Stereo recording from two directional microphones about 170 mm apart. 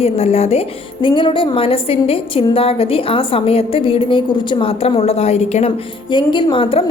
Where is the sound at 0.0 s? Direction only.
40° left (ahead or behind).